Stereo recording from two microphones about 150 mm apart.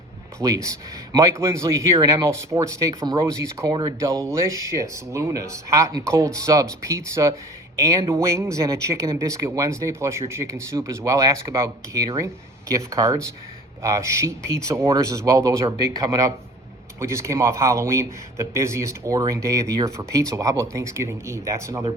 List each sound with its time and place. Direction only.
0.4 s speech: 20° right (ahead or behind)
4.1 s speech: 5° left (ahead or behind)
4.4 s speech: 20° right (ahead or behind)